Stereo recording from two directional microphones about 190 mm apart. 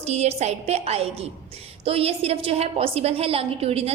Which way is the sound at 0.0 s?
35° right (ahead or behind).